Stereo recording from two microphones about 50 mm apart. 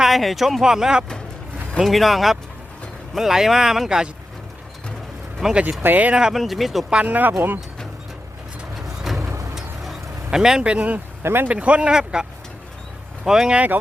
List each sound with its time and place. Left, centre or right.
0.0 s speech: centre
1.8 s speech: centre
5.4 s speech: centre
5.8 s speech: right
6.3 s speech: centre
7.0 s speech: right
9.1 s music: centre
9.6 s vehicle: centre
10.3 s speech: centre
10.7 s speech: right
11.2 s speech: right
11.4 s speech: right
11.9 s speech: centre
13.2 s speech: centre